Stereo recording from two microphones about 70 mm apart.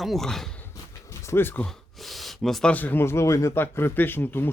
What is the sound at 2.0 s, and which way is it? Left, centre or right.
Gasp, centre.